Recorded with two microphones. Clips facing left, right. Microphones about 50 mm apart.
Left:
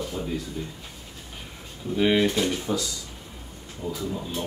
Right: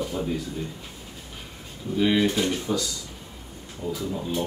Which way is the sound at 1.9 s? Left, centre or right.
Centre.